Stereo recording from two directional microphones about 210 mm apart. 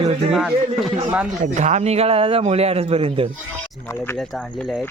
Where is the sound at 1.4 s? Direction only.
30° right (ahead or behind).